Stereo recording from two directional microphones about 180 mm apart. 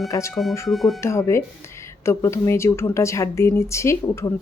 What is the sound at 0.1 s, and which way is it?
Speech, 15° left (ahead or behind).